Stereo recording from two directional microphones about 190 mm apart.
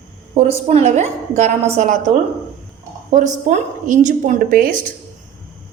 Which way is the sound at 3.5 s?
40° right (ahead or behind).